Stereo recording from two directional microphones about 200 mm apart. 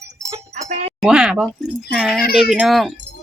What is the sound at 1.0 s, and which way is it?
Speech, 5° right (ahead or behind).